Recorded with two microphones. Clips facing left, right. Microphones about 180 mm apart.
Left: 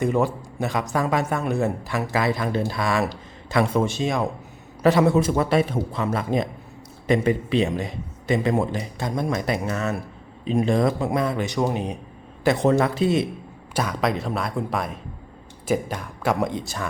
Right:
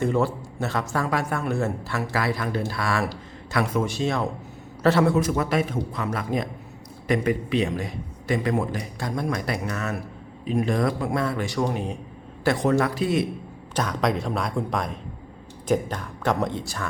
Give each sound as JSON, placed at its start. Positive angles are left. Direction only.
{"t": 0.0, "sound": "a man's voice", "side_deg": 15}
{"t": 5.1, "sound": "a man's voice", "side_deg": 30}
{"t": 13.7, "sound": "speech", "side_deg": 5}